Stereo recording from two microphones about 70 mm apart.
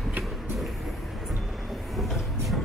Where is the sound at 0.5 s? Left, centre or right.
Centre.